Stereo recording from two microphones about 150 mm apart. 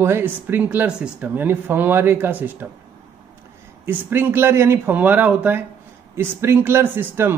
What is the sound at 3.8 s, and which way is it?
Speech, 15° right (ahead or behind).